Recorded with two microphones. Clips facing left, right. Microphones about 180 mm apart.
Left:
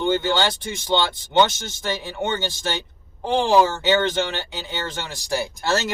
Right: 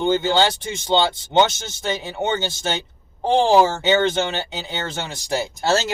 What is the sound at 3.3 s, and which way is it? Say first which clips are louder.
Speech: right 2 dB; 25° right (ahead or behind).